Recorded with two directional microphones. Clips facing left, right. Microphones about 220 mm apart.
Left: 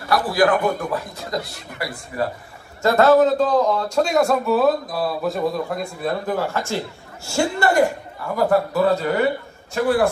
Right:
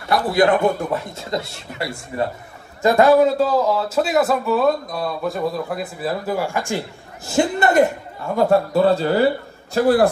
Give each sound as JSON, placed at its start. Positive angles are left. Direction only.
{"t": 0.1, "sound": "a man's voice", "side_deg": -20}
{"t": 2.8, "sound": "a man's voice", "side_deg": -15}